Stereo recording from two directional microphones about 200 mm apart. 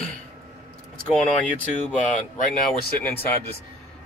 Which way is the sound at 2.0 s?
40° left (ahead or behind).